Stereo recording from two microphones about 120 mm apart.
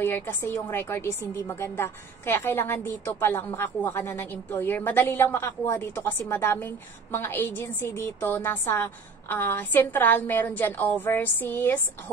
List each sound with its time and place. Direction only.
0.0 s a woman's voice: 20° left (ahead or behind)